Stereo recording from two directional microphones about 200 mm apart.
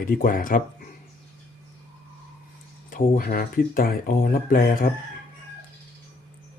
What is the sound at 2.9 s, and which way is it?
Speech, 45° left (ahead or behind).